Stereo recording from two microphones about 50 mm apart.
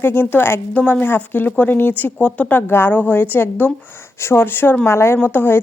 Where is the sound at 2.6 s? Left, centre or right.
Left.